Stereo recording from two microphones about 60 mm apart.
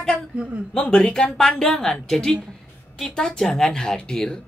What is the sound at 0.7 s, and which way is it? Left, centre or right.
A woman's voice, centre.